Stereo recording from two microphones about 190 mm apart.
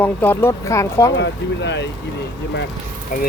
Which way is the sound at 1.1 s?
65° left (ahead or behind).